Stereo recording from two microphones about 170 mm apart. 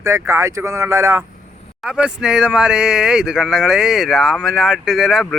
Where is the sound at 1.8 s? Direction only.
5° right (ahead or behind).